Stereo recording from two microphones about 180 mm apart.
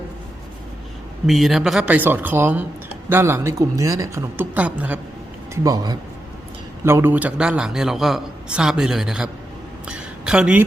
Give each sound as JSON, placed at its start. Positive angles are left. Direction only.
{"t": 1.3, "sound": "a woman's voice", "side_deg": 0}
{"t": 5.6, "sound": "a man's voice", "side_deg": -20}
{"t": 9.8, "sound": "a sound", "side_deg": -5}